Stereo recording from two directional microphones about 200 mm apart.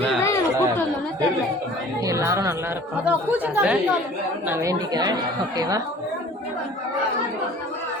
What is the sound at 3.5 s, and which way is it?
A woman's voice, 5° right (ahead or behind).